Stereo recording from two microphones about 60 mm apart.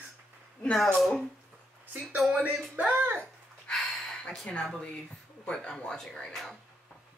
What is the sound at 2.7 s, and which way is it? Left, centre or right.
Speech, right.